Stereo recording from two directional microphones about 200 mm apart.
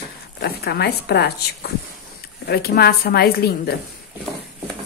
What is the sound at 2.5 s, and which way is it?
Speech, 50° left (ahead or behind).